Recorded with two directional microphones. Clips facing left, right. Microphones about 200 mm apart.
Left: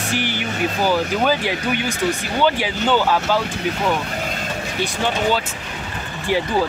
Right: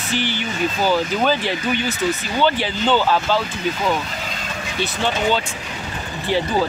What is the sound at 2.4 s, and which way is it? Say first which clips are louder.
Speech: even; 10° left (ahead or behind).